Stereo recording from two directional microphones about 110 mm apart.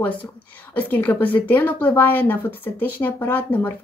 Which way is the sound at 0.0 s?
15° left (ahead or behind).